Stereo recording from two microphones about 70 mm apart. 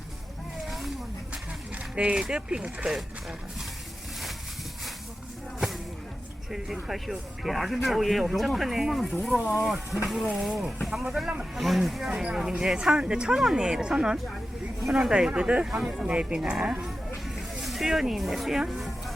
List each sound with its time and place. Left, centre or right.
0.7 s snake: centre
2.0 s speech: centre
6.5 s speech: centre